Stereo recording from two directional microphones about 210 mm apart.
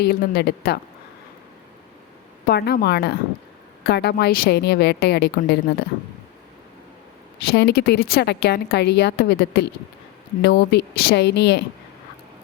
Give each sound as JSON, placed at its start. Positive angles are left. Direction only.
{"t": 0.0, "sound": "a woman's voice", "side_deg": 50}
{"t": 2.5, "sound": "a woman's voice", "side_deg": 50}
{"t": 7.4, "sound": "a woman's voice", "side_deg": 50}